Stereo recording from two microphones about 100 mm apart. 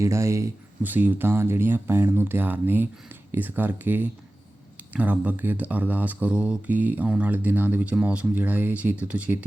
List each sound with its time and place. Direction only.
0.0 s speech: 30° right (ahead or behind)
0.8 s speech: 15° right (ahead or behind)